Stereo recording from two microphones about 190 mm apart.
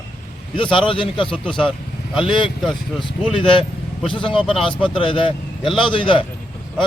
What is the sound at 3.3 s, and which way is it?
A man's voice, 25° left (ahead or behind).